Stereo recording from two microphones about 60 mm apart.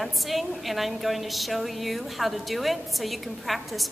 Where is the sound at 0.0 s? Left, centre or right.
Centre.